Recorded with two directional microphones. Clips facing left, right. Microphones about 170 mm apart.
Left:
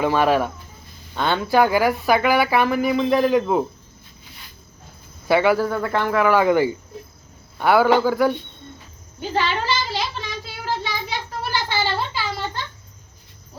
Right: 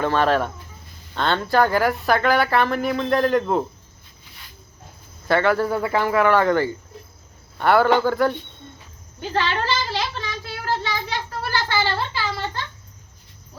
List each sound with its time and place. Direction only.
0.0 s speech: 10° left (ahead or behind)
5.3 s speech: 10° left (ahead or behind)
5.6 s speech: 5° right (ahead or behind)
9.3 s a sound: 10° left (ahead or behind)